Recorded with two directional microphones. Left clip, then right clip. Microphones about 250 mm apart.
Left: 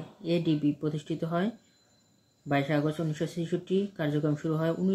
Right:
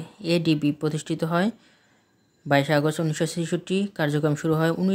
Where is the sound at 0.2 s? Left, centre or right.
Right.